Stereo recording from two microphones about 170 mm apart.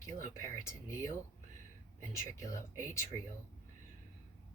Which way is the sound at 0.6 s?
15° left (ahead or behind).